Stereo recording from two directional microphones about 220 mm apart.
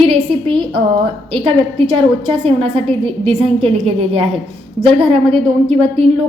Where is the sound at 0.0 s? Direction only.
25° right (ahead or behind).